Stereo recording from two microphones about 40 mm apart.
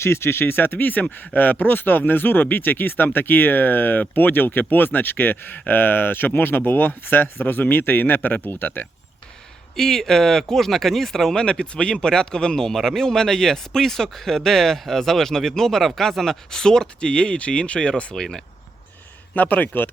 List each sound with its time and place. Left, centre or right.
0.0 s speech: left
9.7 s speech: centre
11.4 s speech: left
19.3 s speech: left